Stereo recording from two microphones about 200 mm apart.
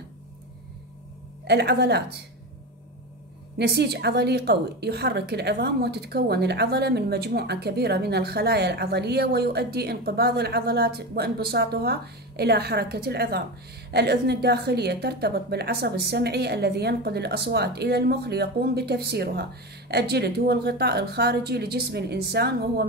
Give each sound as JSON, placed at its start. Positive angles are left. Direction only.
{"t": 1.5, "sound": "a woman's voice", "side_deg": -55}
{"t": 3.5, "sound": "a woman's voice", "side_deg": -55}